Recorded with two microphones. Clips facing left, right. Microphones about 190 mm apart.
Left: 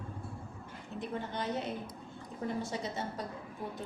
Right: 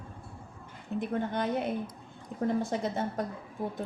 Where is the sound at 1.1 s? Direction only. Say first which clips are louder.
Right 5 dB; 55° right (ahead or behind).